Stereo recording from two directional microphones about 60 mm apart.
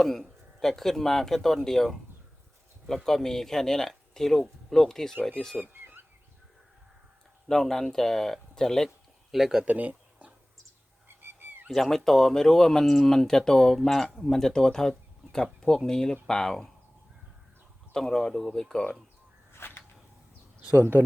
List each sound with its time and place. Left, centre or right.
0.0 s speech: centre
5.7 s bird: right
7.4 s speech: centre
9.3 s speech: centre
9.6 s a sound: right
11.2 s a sound: right
11.7 s speech: centre
17.9 s speech: centre
19.5 s whip: left